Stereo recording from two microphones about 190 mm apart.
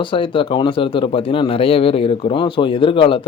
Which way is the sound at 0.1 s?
25° left (ahead or behind).